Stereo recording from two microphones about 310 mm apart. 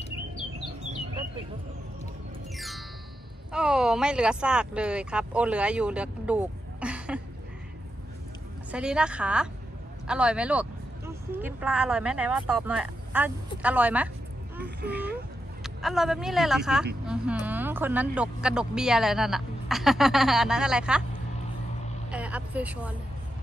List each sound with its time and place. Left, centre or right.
2.5 s music: centre
3.5 s speech: centre
8.7 s speech: centre
14.6 s speech: right
15.6 s speech: centre
22.1 s speech: centre